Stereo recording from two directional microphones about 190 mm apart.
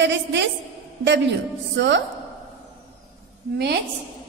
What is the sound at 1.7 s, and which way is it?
Speech, 70° right (ahead or behind).